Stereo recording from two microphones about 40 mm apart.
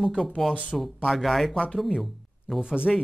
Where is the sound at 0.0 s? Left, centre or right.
Centre.